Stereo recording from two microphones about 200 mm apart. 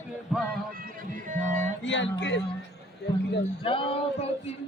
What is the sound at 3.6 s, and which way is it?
Speech, 25° left (ahead or behind).